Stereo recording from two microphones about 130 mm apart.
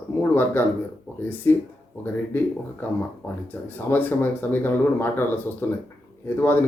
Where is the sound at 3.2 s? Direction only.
15° left (ahead or behind).